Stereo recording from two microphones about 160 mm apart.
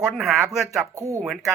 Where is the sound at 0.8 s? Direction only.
20° right (ahead or behind).